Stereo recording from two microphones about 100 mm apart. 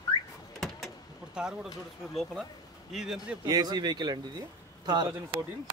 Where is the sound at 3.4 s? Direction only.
40° right (ahead or behind).